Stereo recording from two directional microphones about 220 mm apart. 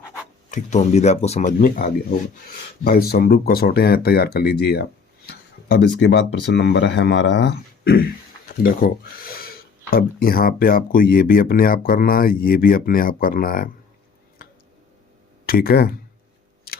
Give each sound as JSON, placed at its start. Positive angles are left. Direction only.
{"t": 0.5, "sound": "speech", "side_deg": 30}
{"t": 15.4, "sound": "speech", "side_deg": 45}